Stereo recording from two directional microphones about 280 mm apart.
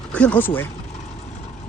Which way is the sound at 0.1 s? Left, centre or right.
Centre.